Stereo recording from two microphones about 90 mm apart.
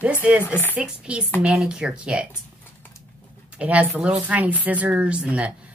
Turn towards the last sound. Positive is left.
turn(degrees=-15)  # may be behind; listen again after turning